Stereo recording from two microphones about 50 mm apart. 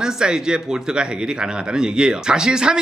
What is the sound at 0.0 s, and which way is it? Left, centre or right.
A man's voice, centre.